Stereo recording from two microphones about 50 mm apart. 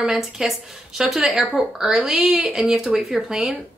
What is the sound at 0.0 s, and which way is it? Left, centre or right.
Speech, centre.